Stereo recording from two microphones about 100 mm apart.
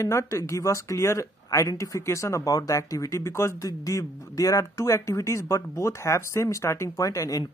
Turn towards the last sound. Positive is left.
turn(degrees=35)  # may be behind; listen again after turning